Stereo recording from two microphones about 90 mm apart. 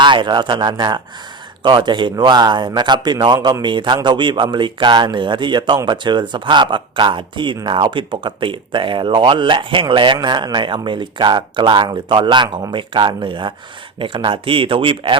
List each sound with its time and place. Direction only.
0.0 s speech: 60° right (ahead or behind)
10.2 s speech: 50° right (ahead or behind); by 15.1 s 75° right (ahead or behind)